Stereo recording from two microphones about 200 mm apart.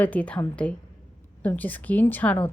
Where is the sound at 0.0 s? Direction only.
5° left (ahead or behind).